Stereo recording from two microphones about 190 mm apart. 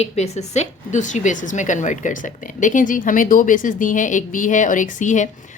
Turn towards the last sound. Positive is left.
turn(degrees=40)  # may be behind; listen again after turning